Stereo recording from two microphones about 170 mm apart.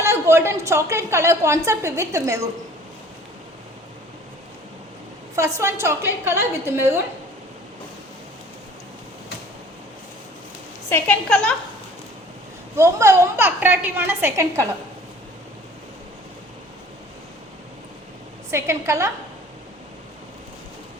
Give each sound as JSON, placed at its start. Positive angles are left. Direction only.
{"t": 0.0, "sound": "a woman's voice", "side_deg": -15}
{"t": 5.4, "sound": "a woman's voice", "side_deg": -15}
{"t": 10.8, "sound": "a woman's voice", "side_deg": 10}
{"t": 12.7, "sound": "a woman's voice", "side_deg": -15}
{"t": 18.5, "sound": "a woman's voice", "side_deg": -15}